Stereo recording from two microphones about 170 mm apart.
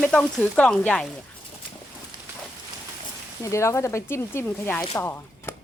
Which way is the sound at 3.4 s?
15° left (ahead or behind).